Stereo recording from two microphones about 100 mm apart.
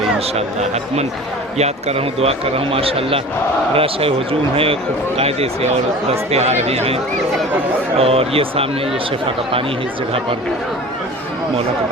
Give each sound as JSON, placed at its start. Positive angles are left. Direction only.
{"t": 0.3, "sound": "speech", "side_deg": -90}
{"t": 6.1, "sound": "speech", "side_deg": -90}
{"t": 7.9, "sound": "speech", "side_deg": -75}